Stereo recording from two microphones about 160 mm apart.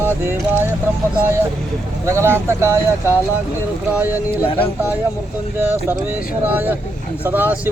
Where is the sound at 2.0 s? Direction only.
15° right (ahead or behind).